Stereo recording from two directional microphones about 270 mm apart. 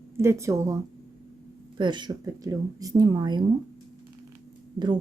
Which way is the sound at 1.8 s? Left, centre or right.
Centre.